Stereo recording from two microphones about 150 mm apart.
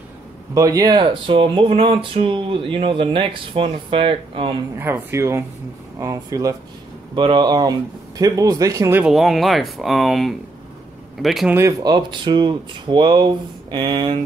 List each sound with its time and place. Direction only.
0.6 s speech: 25° right (ahead or behind)
4.7 s speech: 15° right (ahead or behind)
9.0 s speech: centre (ahead or behind)
11.5 s speech: 20° right (ahead or behind)